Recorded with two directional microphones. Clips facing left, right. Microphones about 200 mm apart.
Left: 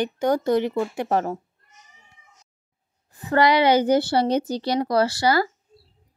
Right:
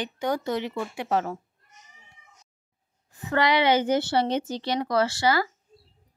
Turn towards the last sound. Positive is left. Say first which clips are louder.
# left 3 dB
turn(degrees=40)  # may be behind; listen again after turning